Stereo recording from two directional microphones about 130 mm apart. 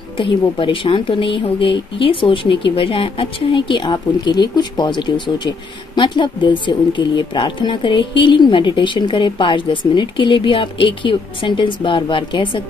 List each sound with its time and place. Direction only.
0.2 s speech: 40° left (ahead or behind)